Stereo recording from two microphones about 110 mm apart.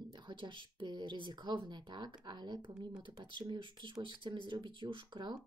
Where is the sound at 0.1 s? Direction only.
45° right (ahead or behind).